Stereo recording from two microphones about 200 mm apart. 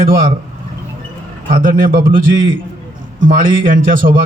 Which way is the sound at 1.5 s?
45° right (ahead or behind).